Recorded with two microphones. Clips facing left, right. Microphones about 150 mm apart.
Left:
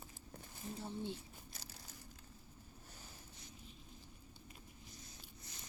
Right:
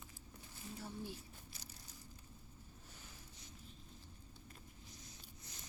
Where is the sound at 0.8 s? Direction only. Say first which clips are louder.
Left 4 dB; 25° left (ahead or behind).